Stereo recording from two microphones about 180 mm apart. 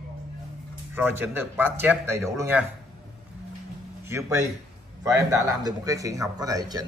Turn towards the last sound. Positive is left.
turn(degrees=-20)  # may be behind; listen again after turning